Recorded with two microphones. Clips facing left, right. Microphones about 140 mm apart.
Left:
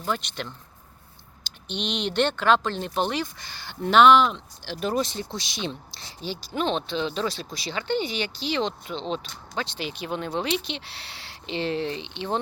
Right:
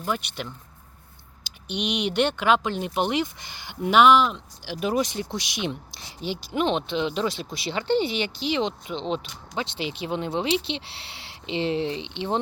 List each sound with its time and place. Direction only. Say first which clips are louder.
0.0 s speech: even; 10° right (ahead or behind); by 12.4 s 25° right (ahead or behind)